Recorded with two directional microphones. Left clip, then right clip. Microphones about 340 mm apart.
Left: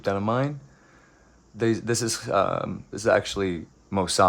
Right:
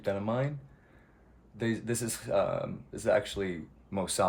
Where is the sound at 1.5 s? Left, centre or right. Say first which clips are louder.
Left 9 dB; centre.